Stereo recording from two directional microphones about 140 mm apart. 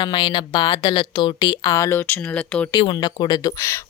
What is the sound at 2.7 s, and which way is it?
Speech, 30° left (ahead or behind).